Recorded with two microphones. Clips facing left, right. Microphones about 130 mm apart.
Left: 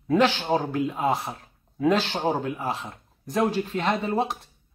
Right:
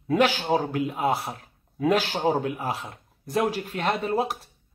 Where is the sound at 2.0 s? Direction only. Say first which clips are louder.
Right 1 dB; 10° right (ahead or behind).